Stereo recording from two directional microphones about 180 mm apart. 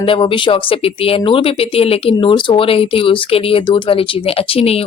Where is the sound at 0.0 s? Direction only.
30° left (ahead or behind).